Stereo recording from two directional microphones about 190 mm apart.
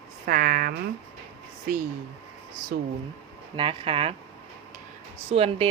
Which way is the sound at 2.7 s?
55° right (ahead or behind).